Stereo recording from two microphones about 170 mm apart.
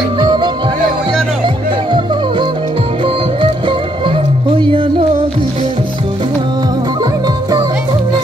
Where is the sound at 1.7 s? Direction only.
25° right (ahead or behind).